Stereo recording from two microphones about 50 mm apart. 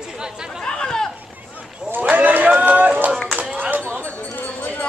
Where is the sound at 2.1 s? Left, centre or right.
Right.